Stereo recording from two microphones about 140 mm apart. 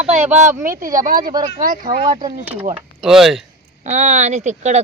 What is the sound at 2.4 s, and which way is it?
Speech, 10° right (ahead or behind).